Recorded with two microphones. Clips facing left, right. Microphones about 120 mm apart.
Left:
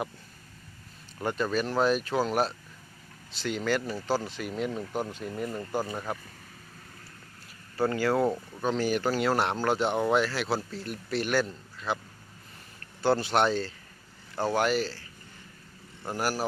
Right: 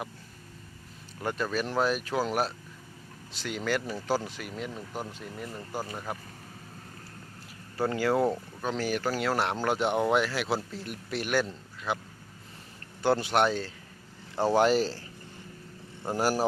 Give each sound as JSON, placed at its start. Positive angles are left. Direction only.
{"t": 1.2, "sound": "speech", "side_deg": 0}
{"t": 7.8, "sound": "speech", "side_deg": -10}
{"t": 9.6, "sound": "speech", "side_deg": -15}
{"t": 14.4, "sound": "speech", "side_deg": -30}
{"t": 16.0, "sound": "speech", "side_deg": -25}